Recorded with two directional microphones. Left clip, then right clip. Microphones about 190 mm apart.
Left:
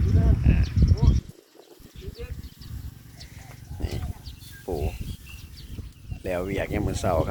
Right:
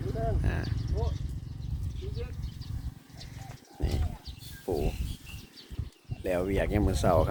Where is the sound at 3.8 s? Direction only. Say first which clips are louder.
Left 1 dB; centre (ahead or behind).